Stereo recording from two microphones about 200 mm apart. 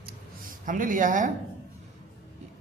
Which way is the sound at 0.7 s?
40° right (ahead or behind).